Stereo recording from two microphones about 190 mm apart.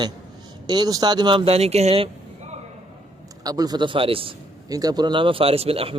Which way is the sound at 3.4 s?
20° right (ahead or behind).